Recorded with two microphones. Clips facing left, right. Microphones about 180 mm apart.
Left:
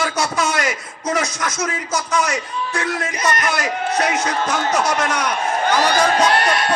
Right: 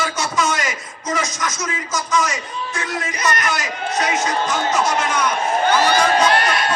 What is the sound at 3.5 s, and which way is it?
Speech, 60° left (ahead or behind).